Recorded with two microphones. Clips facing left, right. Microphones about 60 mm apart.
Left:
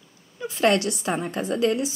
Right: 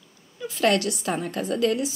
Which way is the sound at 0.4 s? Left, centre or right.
Left.